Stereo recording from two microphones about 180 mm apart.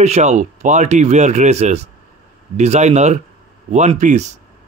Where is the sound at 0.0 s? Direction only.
40° right (ahead or behind).